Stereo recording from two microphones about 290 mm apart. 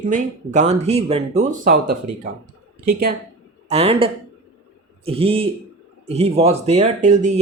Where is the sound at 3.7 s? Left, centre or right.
Centre.